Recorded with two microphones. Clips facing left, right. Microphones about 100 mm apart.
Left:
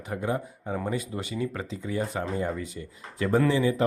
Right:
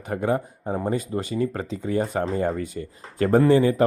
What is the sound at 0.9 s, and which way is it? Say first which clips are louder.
Speech: right 5 dB; 40° right (ahead or behind).